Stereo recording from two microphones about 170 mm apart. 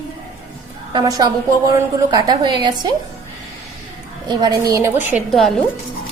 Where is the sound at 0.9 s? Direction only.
25° right (ahead or behind).